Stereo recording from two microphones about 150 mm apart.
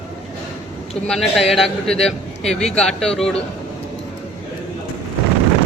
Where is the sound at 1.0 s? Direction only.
5° left (ahead or behind).